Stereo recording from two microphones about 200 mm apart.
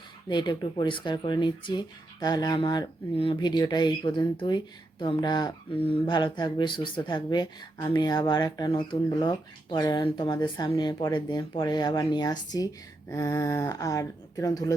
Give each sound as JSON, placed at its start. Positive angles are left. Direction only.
{"t": 0.3, "sound": "speech", "side_deg": 20}